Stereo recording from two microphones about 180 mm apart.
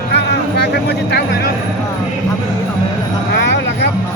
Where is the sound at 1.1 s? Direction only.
65° left (ahead or behind).